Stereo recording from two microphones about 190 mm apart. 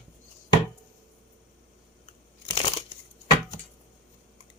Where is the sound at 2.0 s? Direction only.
30° left (ahead or behind).